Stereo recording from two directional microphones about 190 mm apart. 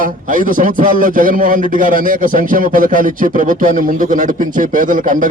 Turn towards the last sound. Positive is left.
turn(degrees=-45)  # may be behind; listen again after turning